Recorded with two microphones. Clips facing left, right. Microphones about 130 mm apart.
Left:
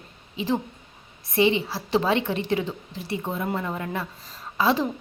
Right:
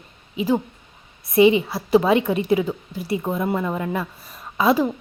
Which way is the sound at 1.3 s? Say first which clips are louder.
Right 6 dB; 15° right (ahead or behind).